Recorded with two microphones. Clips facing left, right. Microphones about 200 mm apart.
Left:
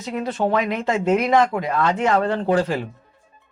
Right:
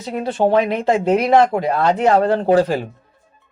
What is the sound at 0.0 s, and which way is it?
Speech, 35° right (ahead or behind).